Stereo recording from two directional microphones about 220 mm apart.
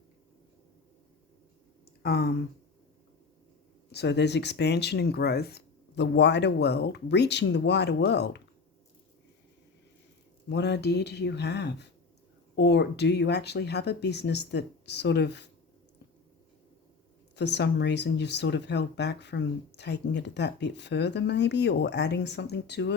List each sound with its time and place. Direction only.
2.0 s speech: 50° left (ahead or behind)
3.9 s speech: 50° left (ahead or behind)
10.5 s speech: 50° left (ahead or behind)
17.3 s speech: 50° left (ahead or behind)